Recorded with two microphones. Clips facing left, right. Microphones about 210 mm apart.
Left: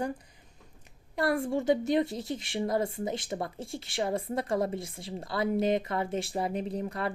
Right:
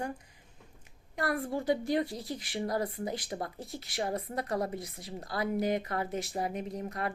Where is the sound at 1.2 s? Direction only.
25° left (ahead or behind).